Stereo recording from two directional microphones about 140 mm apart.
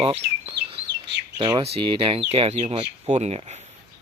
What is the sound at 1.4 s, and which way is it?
Speech, 35° right (ahead or behind).